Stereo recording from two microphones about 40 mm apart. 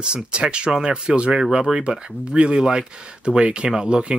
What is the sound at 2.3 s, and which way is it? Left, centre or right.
Speech, right.